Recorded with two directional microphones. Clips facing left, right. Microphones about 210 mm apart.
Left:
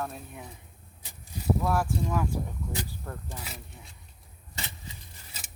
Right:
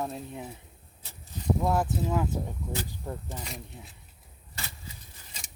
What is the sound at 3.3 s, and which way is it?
Speech, centre (ahead or behind).